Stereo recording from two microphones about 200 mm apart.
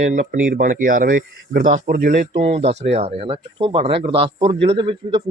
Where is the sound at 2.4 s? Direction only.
30° right (ahead or behind).